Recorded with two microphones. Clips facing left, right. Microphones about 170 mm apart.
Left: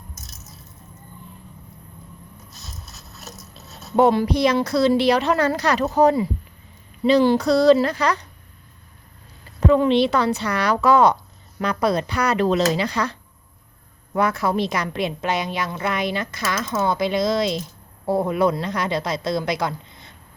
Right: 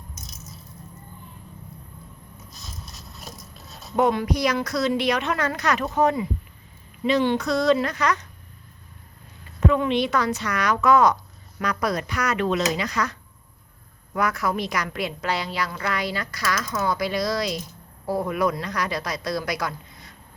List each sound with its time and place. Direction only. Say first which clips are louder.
3.5 s speech: left 5 dB; 30° left (ahead or behind)
9.6 s a woman's voice: left 5 dB; 35° left (ahead or behind)